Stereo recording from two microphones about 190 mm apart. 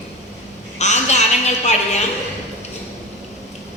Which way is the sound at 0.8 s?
35° left (ahead or behind).